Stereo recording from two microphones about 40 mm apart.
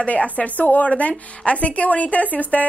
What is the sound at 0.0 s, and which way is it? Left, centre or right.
A woman's voice, left.